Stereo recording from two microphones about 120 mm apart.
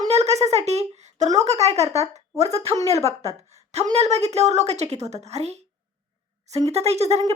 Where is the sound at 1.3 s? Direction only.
65° right (ahead or behind).